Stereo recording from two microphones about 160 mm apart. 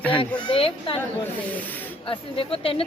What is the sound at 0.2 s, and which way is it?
Speech, 35° left (ahead or behind).